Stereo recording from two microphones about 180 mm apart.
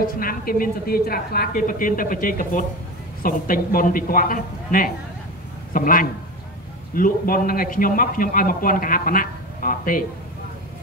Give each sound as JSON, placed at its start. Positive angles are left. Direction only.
{"t": 0.0, "sound": "a man's voice", "side_deg": 55}